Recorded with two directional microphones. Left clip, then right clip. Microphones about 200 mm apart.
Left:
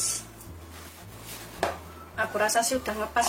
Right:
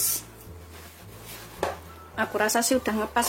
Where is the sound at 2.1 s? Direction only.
50° right (ahead or behind).